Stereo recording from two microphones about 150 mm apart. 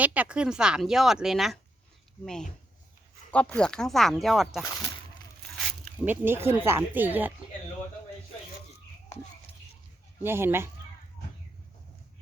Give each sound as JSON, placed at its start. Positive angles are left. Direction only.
{"t": 0.0, "sound": "speech", "side_deg": -10}
{"t": 3.3, "sound": "speech", "side_deg": 10}
{"t": 5.4, "sound": "a sound", "side_deg": 0}
{"t": 6.1, "sound": "speech", "side_deg": -15}
{"t": 10.2, "sound": "speech", "side_deg": -15}